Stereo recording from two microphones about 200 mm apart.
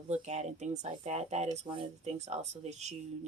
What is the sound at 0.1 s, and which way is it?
Speech, 35° right (ahead or behind).